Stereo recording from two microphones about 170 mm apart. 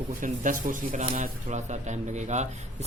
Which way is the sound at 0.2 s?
50° right (ahead or behind).